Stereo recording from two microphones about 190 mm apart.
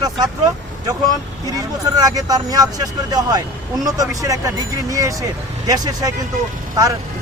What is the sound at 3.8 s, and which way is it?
Speech, 20° right (ahead or behind).